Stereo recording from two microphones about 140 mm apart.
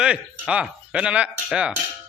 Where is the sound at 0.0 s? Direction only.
5° right (ahead or behind).